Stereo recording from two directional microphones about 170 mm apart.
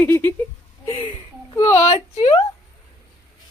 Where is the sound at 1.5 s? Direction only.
15° left (ahead or behind).